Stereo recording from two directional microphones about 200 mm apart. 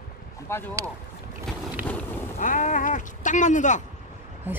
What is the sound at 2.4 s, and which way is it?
Speech, 40° left (ahead or behind).